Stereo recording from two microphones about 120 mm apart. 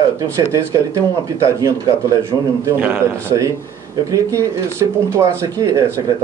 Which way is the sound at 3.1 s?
25° right (ahead or behind).